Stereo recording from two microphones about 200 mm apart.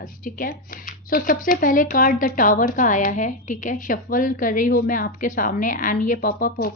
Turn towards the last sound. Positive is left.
turn(degrees=45)  # may be behind; listen again after turning